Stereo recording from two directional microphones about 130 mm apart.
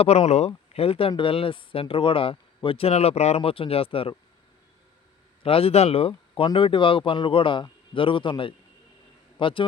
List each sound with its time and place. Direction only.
0.0 s speech: 55° left (ahead or behind)
5.4 s speech: 45° left (ahead or behind)